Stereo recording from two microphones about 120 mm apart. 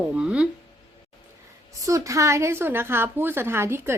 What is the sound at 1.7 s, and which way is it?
A woman's voice, 25° right (ahead or behind).